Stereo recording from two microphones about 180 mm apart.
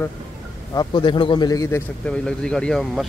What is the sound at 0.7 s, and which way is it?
Speech, 25° left (ahead or behind).